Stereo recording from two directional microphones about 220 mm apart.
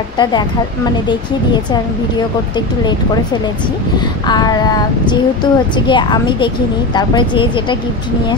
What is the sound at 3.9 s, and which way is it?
Speech, 20° left (ahead or behind).